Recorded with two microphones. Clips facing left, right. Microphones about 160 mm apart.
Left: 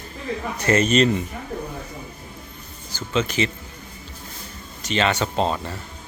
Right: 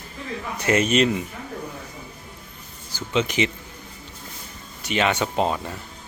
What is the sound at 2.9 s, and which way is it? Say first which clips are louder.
Speech: even; 15° right (ahead or behind).